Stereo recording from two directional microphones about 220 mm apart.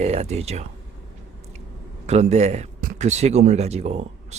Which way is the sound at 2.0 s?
30° right (ahead or behind).